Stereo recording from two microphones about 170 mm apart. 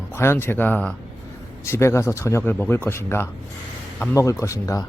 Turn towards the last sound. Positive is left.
turn(degrees=20)  # may be behind; listen again after turning